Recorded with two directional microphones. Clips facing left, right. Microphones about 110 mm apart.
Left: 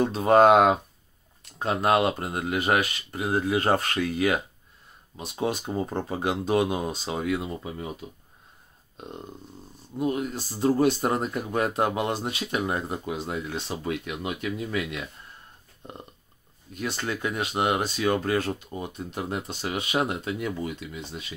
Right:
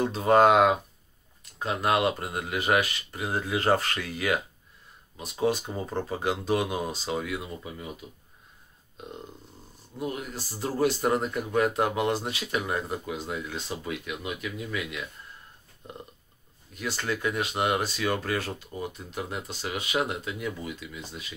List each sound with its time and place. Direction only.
0.1 s speech: 25° left (ahead or behind)
9.9 s speech: 25° left (ahead or behind)
16.7 s speech: 25° left (ahead or behind)